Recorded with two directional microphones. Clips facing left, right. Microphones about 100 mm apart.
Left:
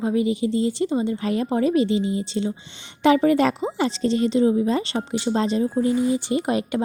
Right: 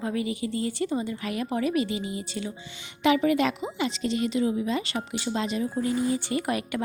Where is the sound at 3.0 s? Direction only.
35° left (ahead or behind).